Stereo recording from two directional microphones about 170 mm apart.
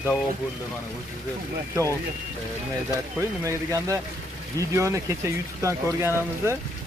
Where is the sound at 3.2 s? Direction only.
20° right (ahead or behind).